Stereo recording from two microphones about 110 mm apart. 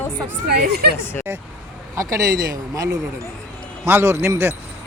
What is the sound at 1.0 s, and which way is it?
Speech, 20° left (ahead or behind).